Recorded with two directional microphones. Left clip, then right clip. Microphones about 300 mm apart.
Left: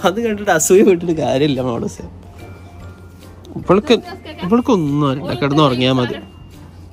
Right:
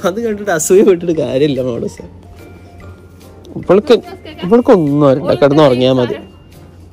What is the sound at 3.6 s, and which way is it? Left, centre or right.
Speech, centre.